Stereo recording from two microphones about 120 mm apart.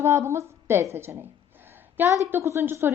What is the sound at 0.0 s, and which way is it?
A woman's voice, 25° right (ahead or behind).